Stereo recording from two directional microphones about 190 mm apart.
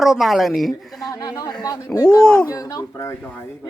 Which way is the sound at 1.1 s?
20° left (ahead or behind).